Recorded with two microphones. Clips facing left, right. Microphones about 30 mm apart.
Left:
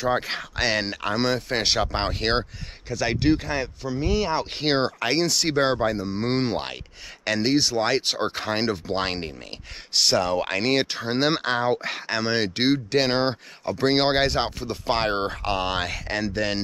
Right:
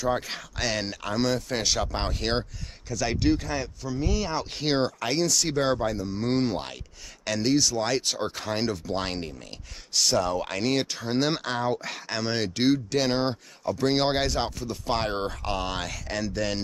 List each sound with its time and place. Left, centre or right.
0.2 s speech: left
10.0 s speech: left